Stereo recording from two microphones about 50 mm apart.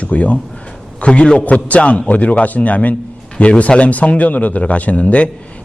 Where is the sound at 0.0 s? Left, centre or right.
Left.